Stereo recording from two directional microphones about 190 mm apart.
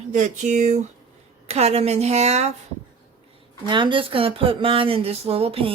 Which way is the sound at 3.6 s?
25° right (ahead or behind).